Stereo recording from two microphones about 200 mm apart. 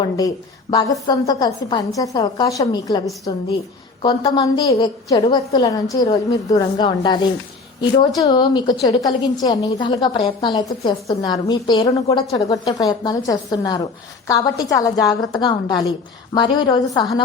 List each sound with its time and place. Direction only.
0.0 s a woman's voice: 20° left (ahead or behind)